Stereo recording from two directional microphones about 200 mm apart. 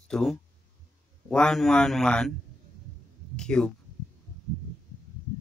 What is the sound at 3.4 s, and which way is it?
Speech, 5° left (ahead or behind).